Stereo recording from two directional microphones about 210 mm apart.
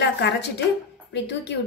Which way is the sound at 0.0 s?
55° left (ahead or behind).